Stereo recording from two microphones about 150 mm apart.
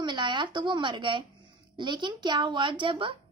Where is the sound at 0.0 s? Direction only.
30° right (ahead or behind).